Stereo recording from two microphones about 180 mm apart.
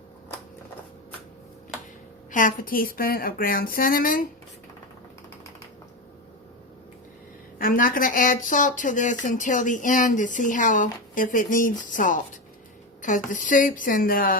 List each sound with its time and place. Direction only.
2.3 s speech: 50° left (ahead or behind)
7.6 s speech: 50° left (ahead or behind)